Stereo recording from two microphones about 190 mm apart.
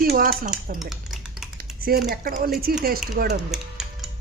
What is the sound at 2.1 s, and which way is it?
Speech, 50° right (ahead or behind).